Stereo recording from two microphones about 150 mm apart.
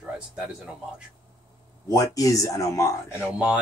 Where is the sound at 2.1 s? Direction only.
25° left (ahead or behind).